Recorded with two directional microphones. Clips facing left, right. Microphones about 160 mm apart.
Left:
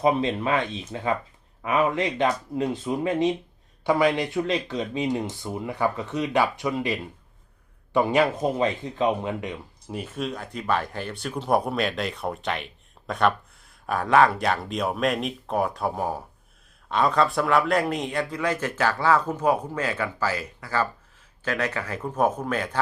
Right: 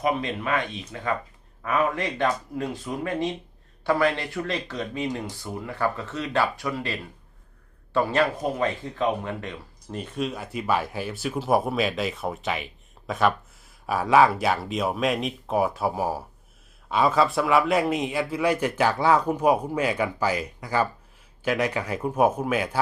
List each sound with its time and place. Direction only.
0.0 s speech: 25° left (ahead or behind); by 22.8 s 10° right (ahead or behind)